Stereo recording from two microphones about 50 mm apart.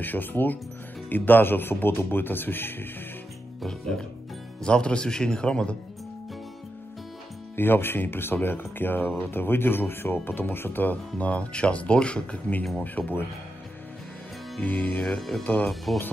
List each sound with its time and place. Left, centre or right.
0.0 s a man's voice: left
3.6 s speech: centre
7.5 s a man's voice: left
12.8 s speech: left
14.6 s speech: left
15.1 s speech: centre